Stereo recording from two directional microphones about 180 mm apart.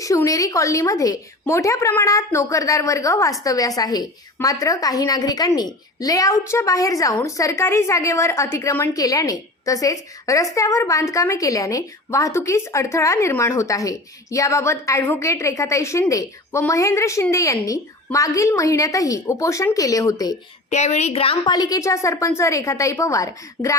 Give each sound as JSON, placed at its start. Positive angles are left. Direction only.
{"t": 0.0, "sound": "a woman's voice", "side_deg": 20}
{"t": 20.7, "sound": "a woman's voice", "side_deg": 40}